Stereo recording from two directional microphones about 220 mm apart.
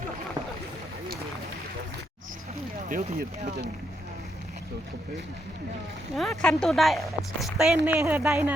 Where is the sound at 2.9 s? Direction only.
35° right (ahead or behind).